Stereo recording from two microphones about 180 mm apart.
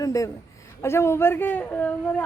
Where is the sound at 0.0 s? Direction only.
20° left (ahead or behind).